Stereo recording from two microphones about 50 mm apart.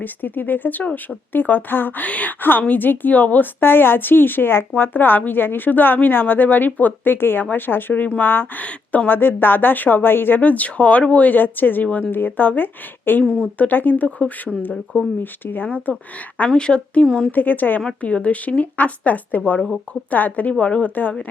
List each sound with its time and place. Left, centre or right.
0.0 s speech: left
3.7 s a woman's voice: left
8.0 s speech: left
8.6 s speech: left
9.0 s speech: left
13.3 s speech: left
16.5 s a woman's voice: centre
17.3 s speech: left
18.0 s a woman's voice: left